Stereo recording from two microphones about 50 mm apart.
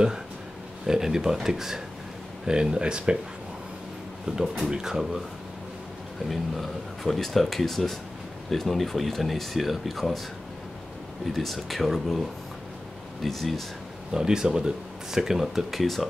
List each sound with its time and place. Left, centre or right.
0.8 s speech: centre
4.4 s speech: centre
6.2 s speech: centre
11.2 s speech: centre
14.1 s speech: centre